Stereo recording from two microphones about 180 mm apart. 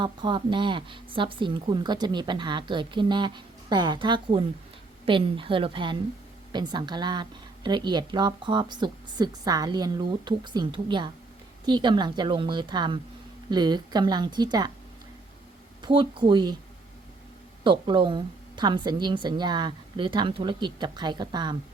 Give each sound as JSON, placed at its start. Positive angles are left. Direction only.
{"t": 0.0, "sound": "speech", "side_deg": -25}
{"t": 15.8, "sound": "speech", "side_deg": -25}
{"t": 17.6, "sound": "speech", "side_deg": -25}